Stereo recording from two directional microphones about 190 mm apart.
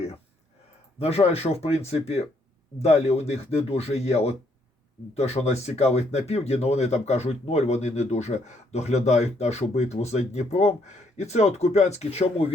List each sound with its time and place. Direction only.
0.9 s speech: 35° left (ahead or behind)